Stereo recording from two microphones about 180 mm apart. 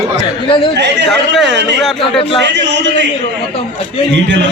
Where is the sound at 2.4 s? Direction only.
80° right.